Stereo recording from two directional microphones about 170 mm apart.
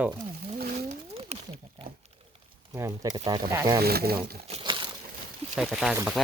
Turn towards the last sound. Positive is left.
turn(degrees=0)  # may be behind; listen again after turning